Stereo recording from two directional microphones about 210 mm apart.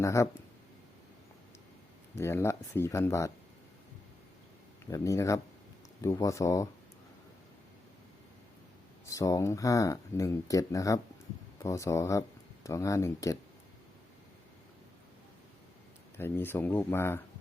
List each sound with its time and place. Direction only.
0.0 s speech: 15° left (ahead or behind)
2.1 s speech: 10° left (ahead or behind)
4.9 s speech: 15° left (ahead or behind)
9.0 s speech: 15° left (ahead or behind)
16.1 s speech: 10° left (ahead or behind)